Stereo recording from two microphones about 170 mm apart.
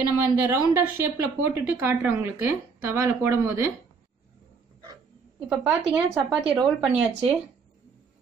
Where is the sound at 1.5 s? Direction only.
10° right (ahead or behind).